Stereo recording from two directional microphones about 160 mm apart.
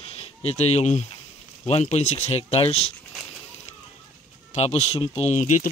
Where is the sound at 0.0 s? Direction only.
40° left (ahead or behind).